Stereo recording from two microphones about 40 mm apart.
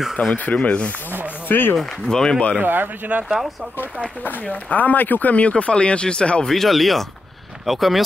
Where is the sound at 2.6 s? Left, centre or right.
Right.